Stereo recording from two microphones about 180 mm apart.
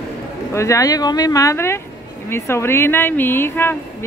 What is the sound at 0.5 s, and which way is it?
A woman's voice, 15° left (ahead or behind).